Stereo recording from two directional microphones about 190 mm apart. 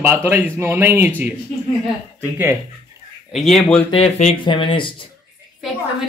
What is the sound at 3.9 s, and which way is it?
Speech, 35° left (ahead or behind).